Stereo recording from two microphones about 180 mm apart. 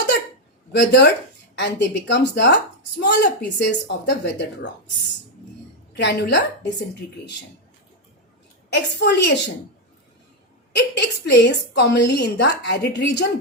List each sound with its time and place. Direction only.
0.7 s a woman's voice: 70° left (ahead or behind)
6.0 s a woman's voice: 70° left (ahead or behind)
8.7 s a woman's voice: 70° left (ahead or behind)
10.8 s a woman's voice: 65° left (ahead or behind)